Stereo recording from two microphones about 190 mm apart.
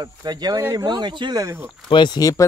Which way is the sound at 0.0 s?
20° right (ahead or behind).